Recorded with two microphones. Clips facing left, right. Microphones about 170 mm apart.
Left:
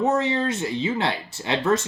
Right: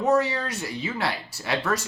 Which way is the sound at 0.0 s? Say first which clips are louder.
Left 1 dB; 25° left (ahead or behind).